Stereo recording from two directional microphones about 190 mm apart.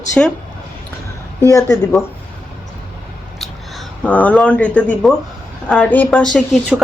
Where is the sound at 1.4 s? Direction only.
15° left (ahead or behind).